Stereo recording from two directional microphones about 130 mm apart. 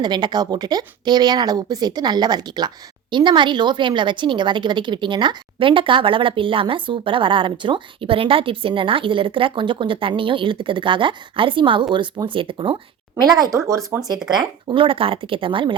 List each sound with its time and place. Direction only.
0.0 s speech: 35° right (ahead or behind)
13.3 s speech: 30° right (ahead or behind)
14.3 s speech: 40° right (ahead or behind)